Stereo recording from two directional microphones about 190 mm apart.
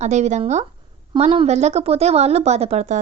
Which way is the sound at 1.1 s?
25° right (ahead or behind).